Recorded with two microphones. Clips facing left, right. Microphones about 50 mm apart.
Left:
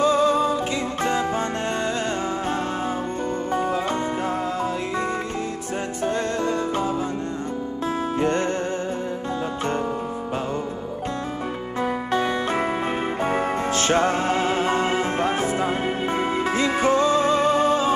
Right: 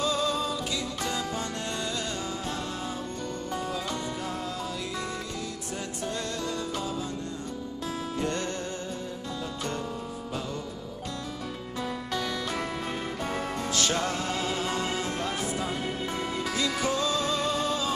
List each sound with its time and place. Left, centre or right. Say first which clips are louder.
0.0 s music: left 9 dB; left
6.0 s music: left 10 dB; left
8.2 s music: left 8 dB; left
11.8 s music: left 9 dB; left